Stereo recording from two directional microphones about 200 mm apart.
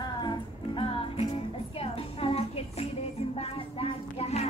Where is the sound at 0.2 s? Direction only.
25° left (ahead or behind).